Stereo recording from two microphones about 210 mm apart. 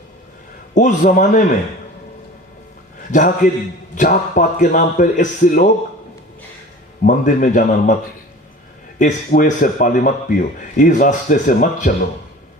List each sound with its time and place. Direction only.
0.7 s speech: 35° left (ahead or behind)
3.1 s speech: 40° left (ahead or behind)
7.0 s speech: 40° left (ahead or behind)
9.0 s speech: 40° left (ahead or behind)